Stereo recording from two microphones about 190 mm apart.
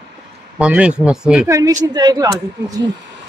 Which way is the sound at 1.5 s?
20° right (ahead or behind).